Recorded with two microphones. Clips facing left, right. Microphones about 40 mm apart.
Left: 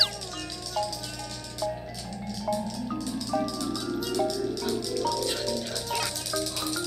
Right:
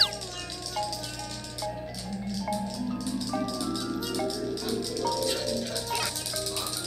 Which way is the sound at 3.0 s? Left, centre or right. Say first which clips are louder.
Left 4 dB; centre.